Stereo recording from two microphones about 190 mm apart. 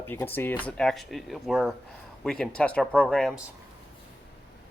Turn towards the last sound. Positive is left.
turn(degrees=5)  # may be behind; listen again after turning